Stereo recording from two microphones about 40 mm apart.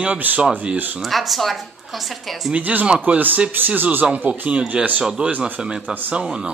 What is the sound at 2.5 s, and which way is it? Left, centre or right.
A man's voice, right.